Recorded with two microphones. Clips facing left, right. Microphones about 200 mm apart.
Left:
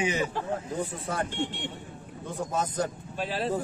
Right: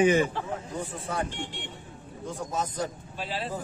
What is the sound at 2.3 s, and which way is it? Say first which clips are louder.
Speech: left 2 dB; 50° left (ahead or behind).